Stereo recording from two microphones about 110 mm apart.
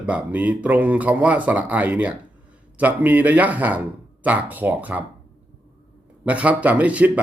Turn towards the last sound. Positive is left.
turn(degrees=-15)  # may be behind; listen again after turning